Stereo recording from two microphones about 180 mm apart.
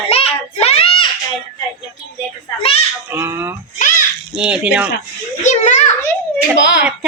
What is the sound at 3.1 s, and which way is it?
Fowl, 15° right (ahead or behind).